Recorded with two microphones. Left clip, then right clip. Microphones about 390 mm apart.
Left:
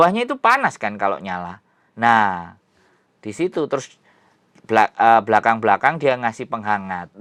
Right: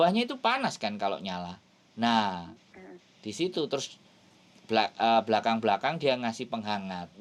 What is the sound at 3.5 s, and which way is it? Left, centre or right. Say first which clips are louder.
Speech: left 9 dB; left.